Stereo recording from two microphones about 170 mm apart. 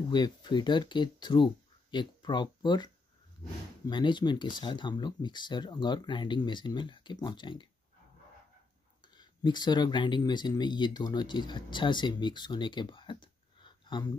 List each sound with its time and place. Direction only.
0.1 s speech: 25° left (ahead or behind)
9.0 s speech: 25° left (ahead or behind)